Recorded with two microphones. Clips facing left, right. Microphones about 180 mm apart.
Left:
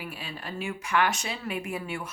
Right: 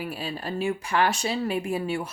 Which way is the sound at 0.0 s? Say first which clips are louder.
Right 6 dB; 35° right (ahead or behind).